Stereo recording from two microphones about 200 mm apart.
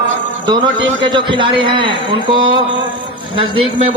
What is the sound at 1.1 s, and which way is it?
A man's voice, 25° right (ahead or behind).